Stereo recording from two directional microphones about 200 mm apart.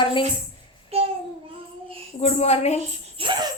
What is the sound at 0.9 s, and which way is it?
Child singing, 30° right (ahead or behind).